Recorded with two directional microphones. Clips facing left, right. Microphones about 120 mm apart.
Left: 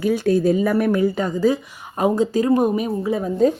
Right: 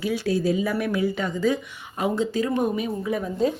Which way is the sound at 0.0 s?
50° left (ahead or behind).